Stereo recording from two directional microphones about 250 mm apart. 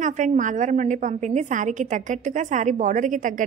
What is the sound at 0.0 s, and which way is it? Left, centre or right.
A woman's voice, right.